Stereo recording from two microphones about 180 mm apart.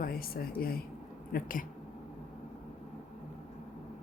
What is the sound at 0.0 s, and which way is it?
A woman's voice, 55° left (ahead or behind).